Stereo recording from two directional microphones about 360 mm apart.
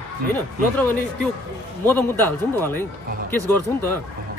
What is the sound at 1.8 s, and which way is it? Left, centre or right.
A man's voice, centre.